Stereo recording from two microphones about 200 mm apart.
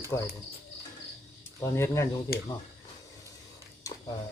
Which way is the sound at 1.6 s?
15° left (ahead or behind).